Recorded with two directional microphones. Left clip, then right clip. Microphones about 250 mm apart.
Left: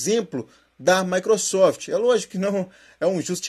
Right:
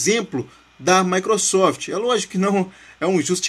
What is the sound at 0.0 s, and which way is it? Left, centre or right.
A man's voice, centre.